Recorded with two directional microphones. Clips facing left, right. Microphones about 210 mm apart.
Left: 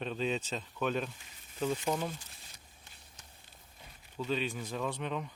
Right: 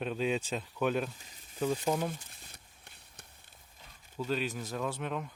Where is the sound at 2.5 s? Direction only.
60° right (ahead or behind).